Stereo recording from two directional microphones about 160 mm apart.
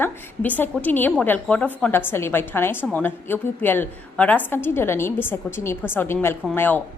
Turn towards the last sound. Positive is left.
turn(degrees=10)  # may be behind; listen again after turning